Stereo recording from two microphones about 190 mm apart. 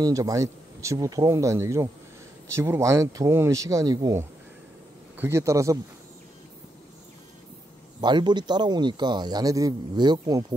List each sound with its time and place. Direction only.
0.0 s speech: 15° right (ahead or behind)
8.0 s speech: 25° right (ahead or behind)